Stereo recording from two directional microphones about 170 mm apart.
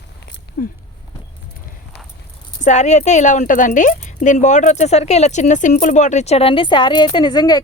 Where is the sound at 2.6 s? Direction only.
45° left (ahead or behind).